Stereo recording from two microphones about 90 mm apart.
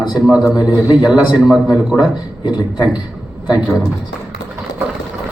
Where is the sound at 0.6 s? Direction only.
50° left (ahead or behind).